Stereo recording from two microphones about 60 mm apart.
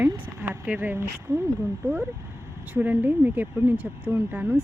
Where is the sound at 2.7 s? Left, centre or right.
Right.